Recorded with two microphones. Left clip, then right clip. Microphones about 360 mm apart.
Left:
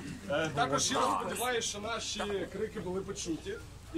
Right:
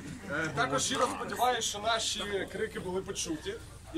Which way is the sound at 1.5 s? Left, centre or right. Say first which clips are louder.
Right 4 dB; right.